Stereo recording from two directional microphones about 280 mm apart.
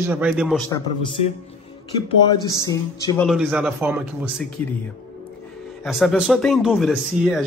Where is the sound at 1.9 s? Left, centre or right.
Centre.